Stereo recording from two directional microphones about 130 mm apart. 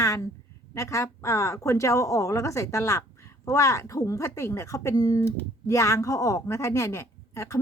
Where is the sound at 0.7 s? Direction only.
25° left (ahead or behind).